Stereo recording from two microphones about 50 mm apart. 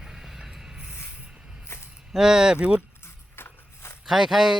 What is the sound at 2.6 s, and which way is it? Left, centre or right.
Speech, right.